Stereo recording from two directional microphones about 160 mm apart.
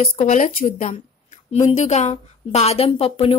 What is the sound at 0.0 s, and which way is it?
A woman's voice, 45° left (ahead or behind).